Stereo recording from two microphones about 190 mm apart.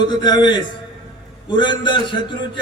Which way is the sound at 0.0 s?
20° left (ahead or behind).